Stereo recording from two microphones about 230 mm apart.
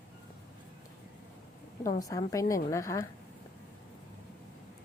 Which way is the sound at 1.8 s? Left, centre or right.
Centre.